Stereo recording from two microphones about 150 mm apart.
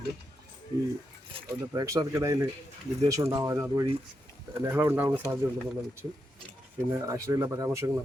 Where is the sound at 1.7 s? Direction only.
25° right (ahead or behind).